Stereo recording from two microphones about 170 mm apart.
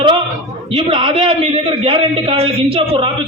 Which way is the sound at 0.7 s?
30° right (ahead or behind).